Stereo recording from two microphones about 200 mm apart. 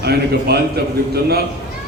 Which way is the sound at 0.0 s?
55° right (ahead or behind).